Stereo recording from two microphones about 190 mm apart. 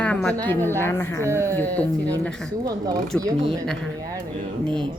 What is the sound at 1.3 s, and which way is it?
Speech, 15° right (ahead or behind).